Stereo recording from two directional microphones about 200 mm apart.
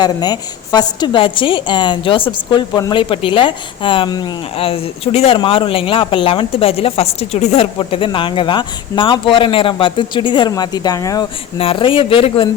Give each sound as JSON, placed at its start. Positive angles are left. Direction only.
{"t": 0.0, "sound": "a woman's voice", "side_deg": 20}